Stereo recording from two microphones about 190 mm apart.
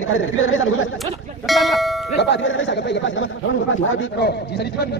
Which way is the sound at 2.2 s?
80° left.